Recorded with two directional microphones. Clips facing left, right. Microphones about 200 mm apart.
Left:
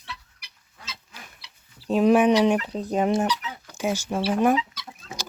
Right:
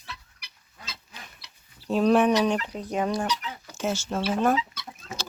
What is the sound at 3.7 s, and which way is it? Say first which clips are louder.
Speech: left 2 dB; 10° left (ahead or behind).